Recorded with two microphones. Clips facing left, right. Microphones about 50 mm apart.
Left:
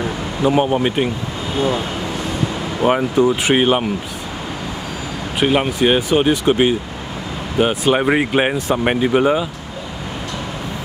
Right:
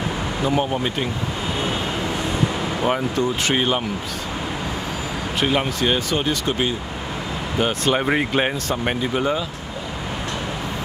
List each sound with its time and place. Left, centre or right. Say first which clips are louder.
0.4 s speech: left 7 dB; left
2.8 s speech: left 8 dB; centre
5.4 s speech: left 5 dB; centre
7.5 s speech: left 5 dB; centre